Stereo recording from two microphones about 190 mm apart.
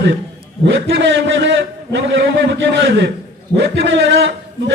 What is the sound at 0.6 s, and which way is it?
A man's voice, 65° right (ahead or behind).